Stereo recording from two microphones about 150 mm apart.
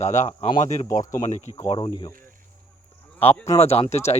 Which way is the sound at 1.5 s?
30° right (ahead or behind).